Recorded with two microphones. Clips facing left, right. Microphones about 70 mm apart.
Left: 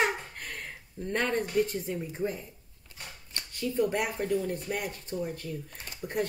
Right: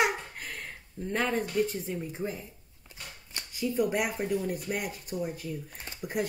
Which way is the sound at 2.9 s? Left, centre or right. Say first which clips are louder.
Even; centre.